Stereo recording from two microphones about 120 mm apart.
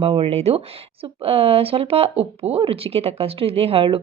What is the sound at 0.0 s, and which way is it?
A woman's voice, 55° right (ahead or behind).